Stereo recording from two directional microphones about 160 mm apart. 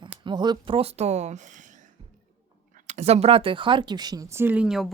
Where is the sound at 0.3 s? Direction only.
25° right (ahead or behind).